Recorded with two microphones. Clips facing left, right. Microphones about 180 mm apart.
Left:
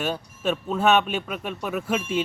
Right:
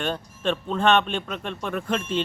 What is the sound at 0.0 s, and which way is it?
Speech, 5° left (ahead or behind).